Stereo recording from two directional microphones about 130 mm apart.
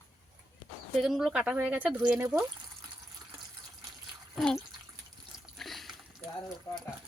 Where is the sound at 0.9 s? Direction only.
5° right (ahead or behind).